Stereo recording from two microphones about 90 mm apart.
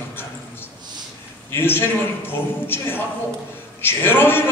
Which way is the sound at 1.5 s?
25° left (ahead or behind).